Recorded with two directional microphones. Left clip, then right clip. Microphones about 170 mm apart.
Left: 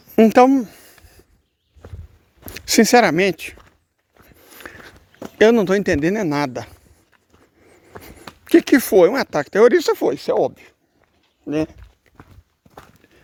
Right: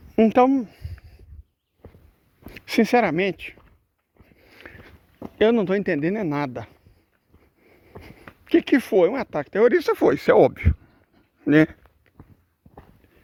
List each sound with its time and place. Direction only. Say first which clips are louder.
0.2 s a sound: left 5 dB; 40° left (ahead or behind)
2.5 s speech: left 6 dB; 45° left (ahead or behind)
4.3 s a sound: left 6 dB; 40° left (ahead or behind)
5.4 s speech: left 6 dB; 40° left (ahead or behind)
7.7 s writing: left 5 dB; 30° left (ahead or behind)
10.0 s speech: right 2 dB; 5° right (ahead or behind)
10.3 s speech: right 3 dB; 20° right (ahead or behind)
12.1 s clip-clop: left 7 dB; 20° left (ahead or behind)